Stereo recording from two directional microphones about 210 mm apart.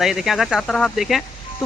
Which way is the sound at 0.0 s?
Centre (ahead or behind).